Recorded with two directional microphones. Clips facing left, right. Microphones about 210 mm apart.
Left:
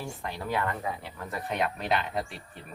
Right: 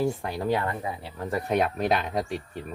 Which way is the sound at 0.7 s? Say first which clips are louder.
Right 1 dB; 15° right (ahead or behind).